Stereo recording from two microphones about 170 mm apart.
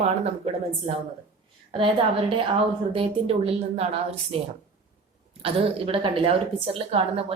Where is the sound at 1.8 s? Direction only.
30° right (ahead or behind).